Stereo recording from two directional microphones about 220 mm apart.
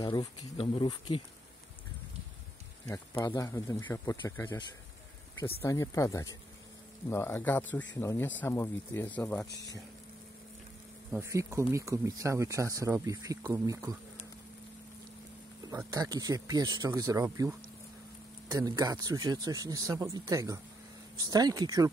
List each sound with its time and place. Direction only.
0.0 s speech: 20° left (ahead or behind)
2.9 s speech: 15° left (ahead or behind)
11.1 s speech: 10° right (ahead or behind)
15.9 s speech: 15° right (ahead or behind)